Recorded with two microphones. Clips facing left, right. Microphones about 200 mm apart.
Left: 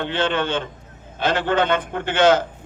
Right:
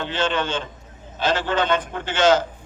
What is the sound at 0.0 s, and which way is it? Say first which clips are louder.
A man's voice: left 2 dB; 60° left (ahead or behind).